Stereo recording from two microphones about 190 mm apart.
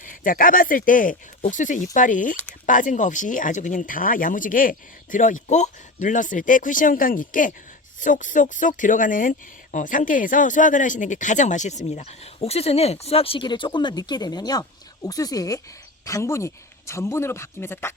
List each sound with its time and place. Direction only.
0.0 s speech: 45° left (ahead or behind)
2.3 s speech: 10° left (ahead or behind)
2.6 s speech: 45° left (ahead or behind); by 17.9 s 15° left (ahead or behind)